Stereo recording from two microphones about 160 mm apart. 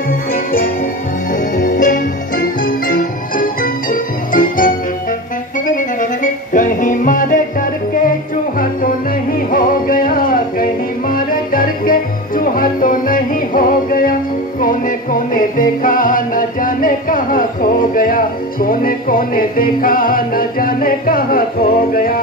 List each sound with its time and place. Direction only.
0.3 s music: 65° left (ahead or behind)
5.8 s music: 55° left (ahead or behind)
9.5 s music: 60° left (ahead or behind)